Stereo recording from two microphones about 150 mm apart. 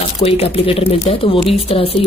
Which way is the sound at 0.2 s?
40° left (ahead or behind).